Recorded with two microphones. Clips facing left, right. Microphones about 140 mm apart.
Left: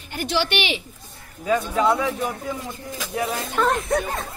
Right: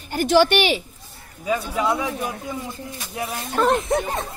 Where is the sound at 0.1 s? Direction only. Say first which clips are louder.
Right 7 dB; 45° right (ahead or behind).